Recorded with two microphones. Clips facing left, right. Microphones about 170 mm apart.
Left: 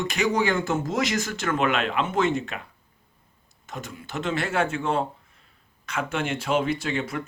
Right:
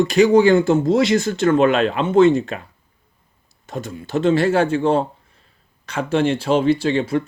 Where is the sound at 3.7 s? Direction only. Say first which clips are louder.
Right 11 dB; 35° right (ahead or behind).